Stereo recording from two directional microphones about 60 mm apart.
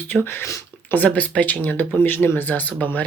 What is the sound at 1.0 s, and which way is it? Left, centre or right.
Speech, left.